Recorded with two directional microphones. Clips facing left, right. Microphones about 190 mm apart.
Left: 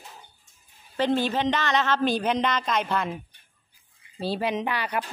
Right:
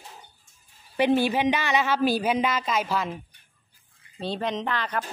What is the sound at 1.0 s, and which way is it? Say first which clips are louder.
A woman's voice: right 2 dB; 10° right (ahead or behind).